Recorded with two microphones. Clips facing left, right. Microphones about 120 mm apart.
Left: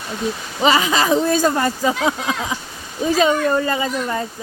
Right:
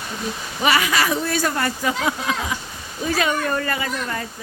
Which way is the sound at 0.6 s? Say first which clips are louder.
Left 3 dB; 25° left (ahead or behind).